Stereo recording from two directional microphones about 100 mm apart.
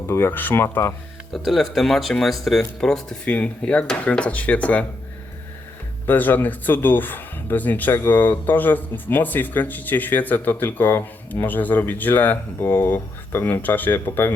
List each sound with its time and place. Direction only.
0.1 s speech: 20° left (ahead or behind)
1.3 s speech: centre (ahead or behind)
6.1 s speech: 20° left (ahead or behind)